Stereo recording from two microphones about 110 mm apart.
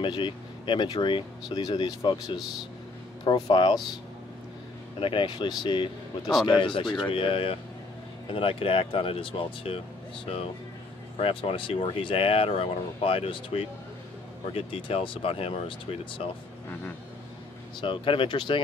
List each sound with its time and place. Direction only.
0.0 s speech: 45° left (ahead or behind)
3.5 s speech: 45° left (ahead or behind)
5.0 s speech: 50° left (ahead or behind)
17.7 s speech: 50° left (ahead or behind)